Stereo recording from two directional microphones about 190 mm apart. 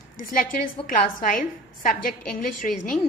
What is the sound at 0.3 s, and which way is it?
A woman's voice, 45° left (ahead or behind).